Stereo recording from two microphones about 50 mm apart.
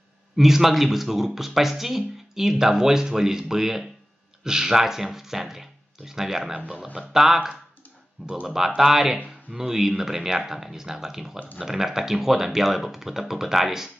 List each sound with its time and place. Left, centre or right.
0.4 s speech: centre
6.5 s speech: centre
7.0 s speech: centre
8.5 s speech: centre